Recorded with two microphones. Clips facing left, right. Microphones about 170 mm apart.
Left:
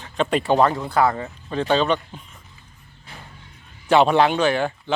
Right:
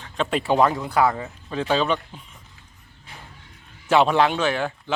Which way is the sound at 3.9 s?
Centre (ahead or behind).